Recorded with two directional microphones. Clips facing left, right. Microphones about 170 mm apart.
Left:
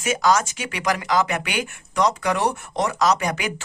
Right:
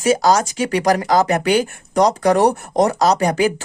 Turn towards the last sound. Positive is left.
turn(degrees=-35)  # may be behind; listen again after turning